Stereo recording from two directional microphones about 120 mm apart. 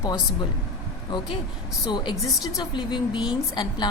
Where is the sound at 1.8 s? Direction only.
35° left (ahead or behind).